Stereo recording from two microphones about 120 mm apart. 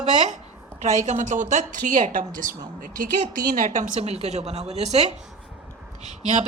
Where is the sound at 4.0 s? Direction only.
60° right (ahead or behind).